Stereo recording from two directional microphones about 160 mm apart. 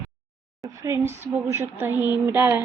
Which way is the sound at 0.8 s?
15° right (ahead or behind).